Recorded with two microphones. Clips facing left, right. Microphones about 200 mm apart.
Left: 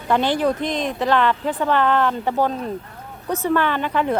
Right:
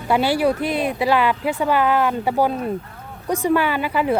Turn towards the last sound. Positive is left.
turn(degrees=-5)  # may be behind; listen again after turning